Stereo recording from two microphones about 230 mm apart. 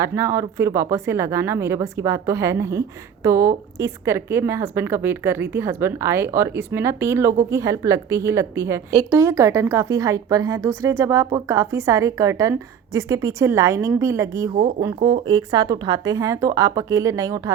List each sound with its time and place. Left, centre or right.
0.0 s speech: centre